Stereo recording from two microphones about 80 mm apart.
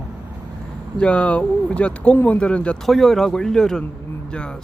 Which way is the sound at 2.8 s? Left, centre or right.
Centre.